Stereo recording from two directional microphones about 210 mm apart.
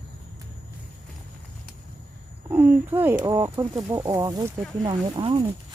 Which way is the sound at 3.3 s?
15° right (ahead or behind).